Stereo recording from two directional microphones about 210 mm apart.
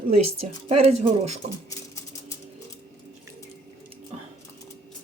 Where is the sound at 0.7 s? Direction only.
30° right (ahead or behind).